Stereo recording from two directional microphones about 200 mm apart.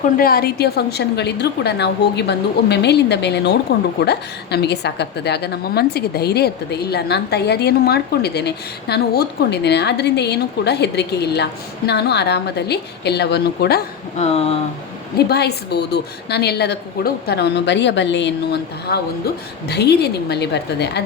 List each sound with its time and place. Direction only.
0.2 s a woman's voice: 50° left (ahead or behind)
14.2 s speech: 30° left (ahead or behind)
15.3 s a woman's voice: 55° left (ahead or behind)